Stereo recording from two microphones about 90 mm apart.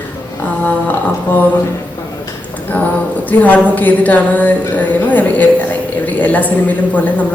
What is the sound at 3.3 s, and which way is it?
A woman's voice, 25° left (ahead or behind).